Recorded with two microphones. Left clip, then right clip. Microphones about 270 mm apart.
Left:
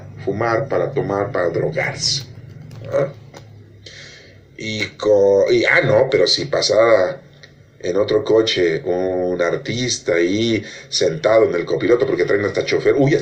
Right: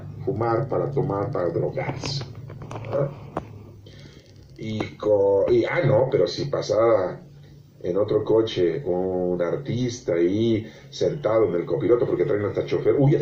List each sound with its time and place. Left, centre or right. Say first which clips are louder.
0.3 s a man's voice: left 6 dB; left
1.1 s speech: left 6 dB; left
1.5 s a man's voice: left 6 dB; left
4.6 s a man's voice: left 6 dB; left